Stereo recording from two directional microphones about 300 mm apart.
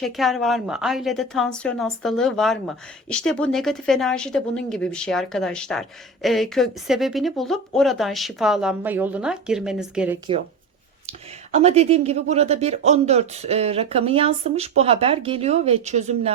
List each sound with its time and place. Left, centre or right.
0.0 s a woman's voice: centre
11.5 s speech: right